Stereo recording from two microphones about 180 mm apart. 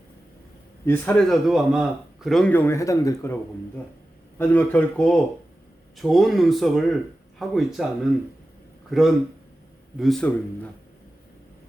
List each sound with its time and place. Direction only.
0.9 s a man's voice: 5° left (ahead or behind)
4.4 s a man's voice: 10° left (ahead or behind)
8.9 s speech: centre (ahead or behind)